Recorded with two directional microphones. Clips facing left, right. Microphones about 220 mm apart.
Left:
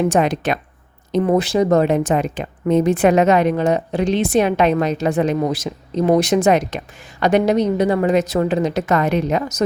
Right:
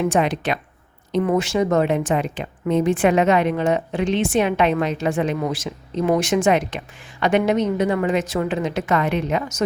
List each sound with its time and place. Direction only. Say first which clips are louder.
0.0 s speech: left 3 dB; 40° left (ahead or behind)